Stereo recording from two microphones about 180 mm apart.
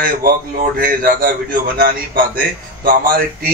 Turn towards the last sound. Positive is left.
turn(degrees=-55)  # may be behind; listen again after turning